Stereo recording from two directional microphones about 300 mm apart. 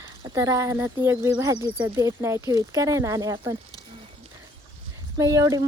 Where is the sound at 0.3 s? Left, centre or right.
Centre.